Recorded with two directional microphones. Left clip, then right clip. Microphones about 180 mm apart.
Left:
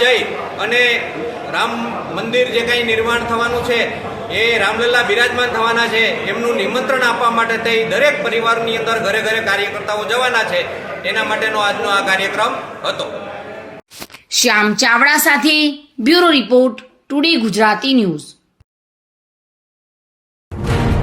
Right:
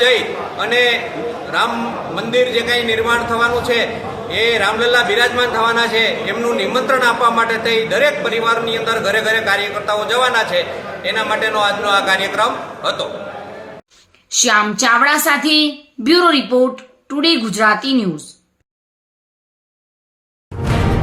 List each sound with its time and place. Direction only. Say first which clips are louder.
0.0 s a man's voice: even; centre (ahead or behind)
14.3 s a woman's voice: left 1 dB; 15° left (ahead or behind)